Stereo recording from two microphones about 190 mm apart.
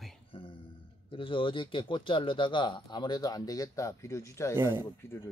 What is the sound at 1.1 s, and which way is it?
Speech, 25° left (ahead or behind).